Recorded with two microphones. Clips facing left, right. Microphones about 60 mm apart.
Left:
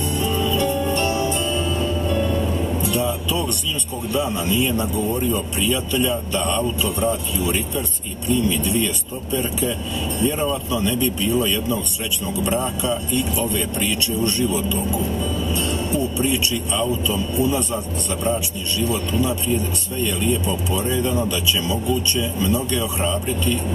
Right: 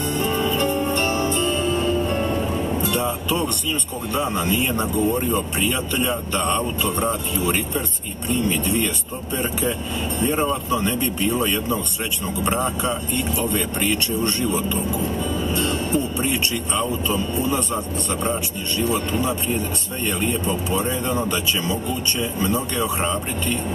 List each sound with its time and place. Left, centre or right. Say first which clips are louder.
0.1 s music: even; right
4.1 s a man's voice: even; right
18.8 s speech: even; right